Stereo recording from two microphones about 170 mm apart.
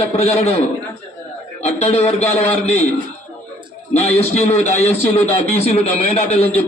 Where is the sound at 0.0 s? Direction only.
40° left (ahead or behind).